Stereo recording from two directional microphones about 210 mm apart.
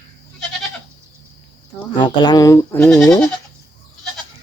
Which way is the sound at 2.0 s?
20° left (ahead or behind).